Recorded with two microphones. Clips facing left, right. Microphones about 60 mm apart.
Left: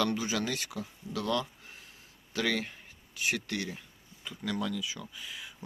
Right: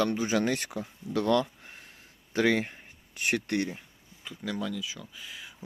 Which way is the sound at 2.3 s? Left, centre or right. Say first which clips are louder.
Right 6 dB; right.